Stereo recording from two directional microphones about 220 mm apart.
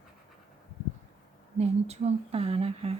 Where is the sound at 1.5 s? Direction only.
30° right (ahead or behind).